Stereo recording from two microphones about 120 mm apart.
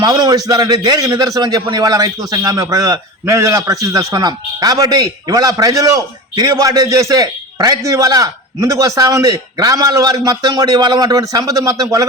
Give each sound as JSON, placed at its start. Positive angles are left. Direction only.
{"t": 0.0, "sound": "a man's voice", "side_deg": -35}